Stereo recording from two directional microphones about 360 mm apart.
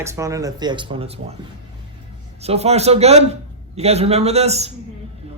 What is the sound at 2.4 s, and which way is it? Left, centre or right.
A man's voice, centre.